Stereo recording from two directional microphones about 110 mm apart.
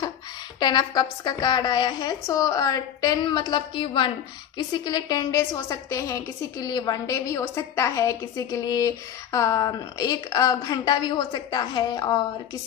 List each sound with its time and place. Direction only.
0.6 s a woman's voice: 40° left (ahead or behind)
4.6 s a woman's voice: 40° left (ahead or behind)